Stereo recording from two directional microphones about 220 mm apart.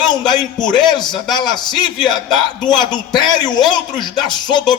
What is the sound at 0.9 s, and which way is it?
A man's voice, 20° left (ahead or behind).